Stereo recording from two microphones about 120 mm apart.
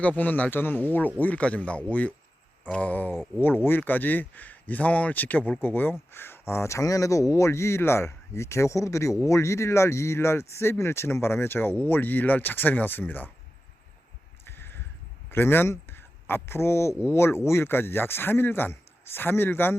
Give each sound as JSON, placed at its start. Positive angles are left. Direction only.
{"t": 0.0, "sound": "speech", "side_deg": 15}
{"t": 14.4, "sound": "a sound", "side_deg": 20}
{"t": 15.3, "sound": "speech", "side_deg": 20}